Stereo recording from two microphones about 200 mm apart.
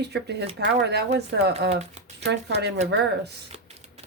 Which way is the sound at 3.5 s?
30° right (ahead or behind).